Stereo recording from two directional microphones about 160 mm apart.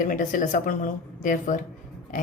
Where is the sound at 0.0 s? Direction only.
55° left (ahead or behind).